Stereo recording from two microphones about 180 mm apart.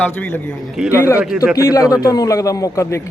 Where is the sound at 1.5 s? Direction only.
20° left (ahead or behind).